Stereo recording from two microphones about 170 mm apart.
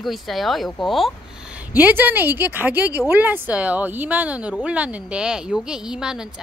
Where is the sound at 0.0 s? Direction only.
Centre (ahead or behind).